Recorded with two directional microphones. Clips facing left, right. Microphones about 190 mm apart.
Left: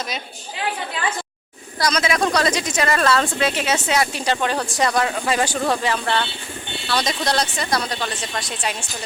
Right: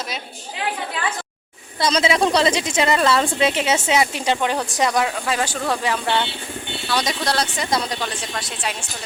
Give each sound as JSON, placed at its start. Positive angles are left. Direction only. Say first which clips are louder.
{"t": 1.8, "sound": "a woman's voice", "louder": "right 2 dB", "side_deg": -25}
{"t": 5.2, "sound": "speech", "louder": "left 2 dB", "side_deg": 5}
{"t": 5.8, "sound": "speech", "louder": "even", "side_deg": -10}
{"t": 7.6, "sound": "a woman's voice", "louder": "right 1 dB", "side_deg": -20}
{"t": 8.0, "sound": "speech", "louder": "left 1 dB", "side_deg": -5}